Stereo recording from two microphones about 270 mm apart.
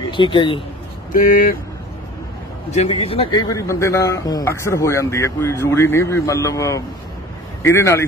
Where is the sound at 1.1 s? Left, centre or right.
Left.